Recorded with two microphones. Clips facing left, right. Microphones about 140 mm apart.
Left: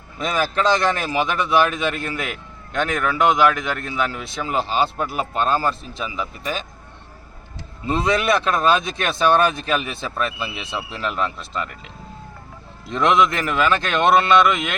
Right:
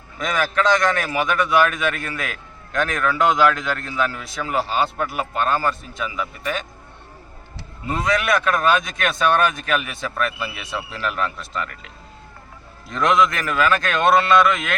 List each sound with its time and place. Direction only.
0.2 s a man's voice: 30° left (ahead or behind)
7.9 s a man's voice: 25° left (ahead or behind)
12.9 s a man's voice: 25° left (ahead or behind)